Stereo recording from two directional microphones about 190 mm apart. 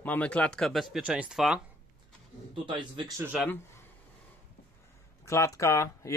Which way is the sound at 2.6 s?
25° right (ahead or behind).